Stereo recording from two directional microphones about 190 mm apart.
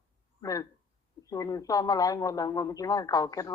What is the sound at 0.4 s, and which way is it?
Speech, 20° left (ahead or behind).